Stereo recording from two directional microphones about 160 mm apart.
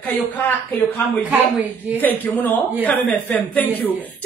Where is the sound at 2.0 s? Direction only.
10° left (ahead or behind).